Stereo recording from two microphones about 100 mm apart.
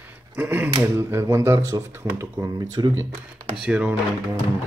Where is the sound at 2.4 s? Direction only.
40° right (ahead or behind).